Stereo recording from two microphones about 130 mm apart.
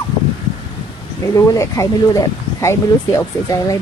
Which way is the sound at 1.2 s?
25° left (ahead or behind).